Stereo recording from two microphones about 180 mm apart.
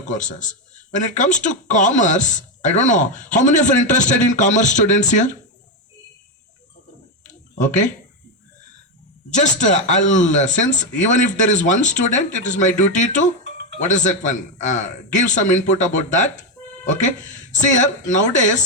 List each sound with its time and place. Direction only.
0.0 s a man's voice: 45° left (ahead or behind)
7.3 s a sound: 45° left (ahead or behind)
9.3 s a man's voice: 40° left (ahead or behind)